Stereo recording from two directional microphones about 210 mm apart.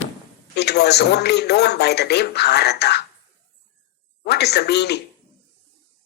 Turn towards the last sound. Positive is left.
turn(degrees=50)  # may be behind; listen again after turning